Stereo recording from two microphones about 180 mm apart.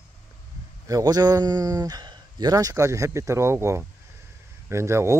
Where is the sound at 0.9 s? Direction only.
20° right (ahead or behind).